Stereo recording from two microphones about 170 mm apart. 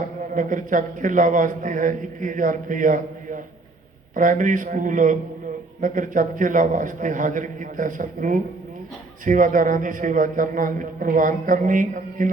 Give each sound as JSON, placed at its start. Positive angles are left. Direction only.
{"t": 0.3, "sound": "a man's voice", "side_deg": -50}